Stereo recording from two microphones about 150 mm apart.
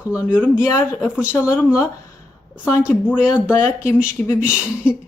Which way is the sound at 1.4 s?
15° left (ahead or behind).